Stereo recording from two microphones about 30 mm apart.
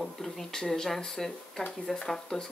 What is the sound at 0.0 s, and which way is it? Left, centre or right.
Speech, centre.